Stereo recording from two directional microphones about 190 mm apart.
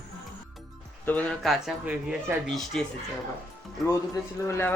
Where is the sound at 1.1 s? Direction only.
5° left (ahead or behind).